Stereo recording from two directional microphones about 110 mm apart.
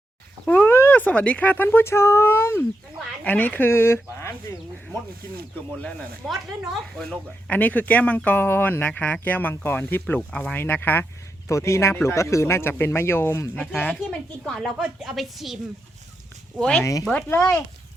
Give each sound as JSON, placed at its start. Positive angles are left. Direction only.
{"t": 0.4, "sound": "speech", "side_deg": 15}
{"t": 6.9, "sound": "speech", "side_deg": 5}
{"t": 13.6, "sound": "a woman's voice", "side_deg": 10}
{"t": 16.6, "sound": "speech", "side_deg": 5}
{"t": 16.8, "sound": "speech", "side_deg": 30}